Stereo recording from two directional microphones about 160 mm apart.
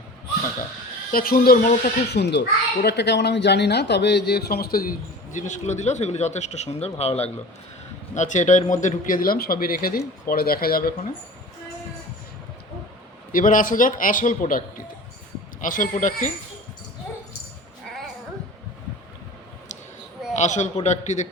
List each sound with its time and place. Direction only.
1.1 s speech: 65° left (ahead or behind)
2.1 s speech: 90° left; by 10.9 s 70° left (ahead or behind)
13.3 s speech: 55° left (ahead or behind)
15.6 s a man's voice: 55° left (ahead or behind)
20.3 s a man's voice: 45° left (ahead or behind)